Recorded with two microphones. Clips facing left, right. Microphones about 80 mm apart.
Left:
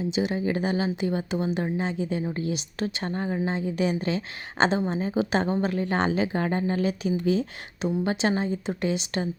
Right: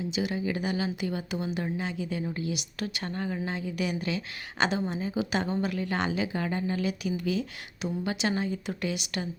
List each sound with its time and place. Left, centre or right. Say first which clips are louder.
0.1 s speech: left 4 dB; left